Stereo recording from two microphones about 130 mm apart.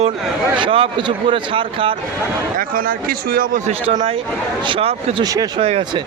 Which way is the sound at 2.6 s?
90° right.